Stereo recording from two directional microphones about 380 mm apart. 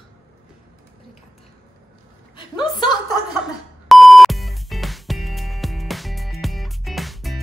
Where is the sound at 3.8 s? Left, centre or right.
Centre.